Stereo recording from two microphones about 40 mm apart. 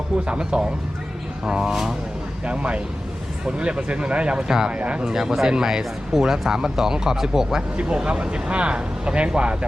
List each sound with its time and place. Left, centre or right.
0.3 s speech: right; by 2.0 s centre
2.4 s speech: right
4.7 s speech: right
5.0 s speech: centre
6.1 s speech: centre
7.8 s speech: right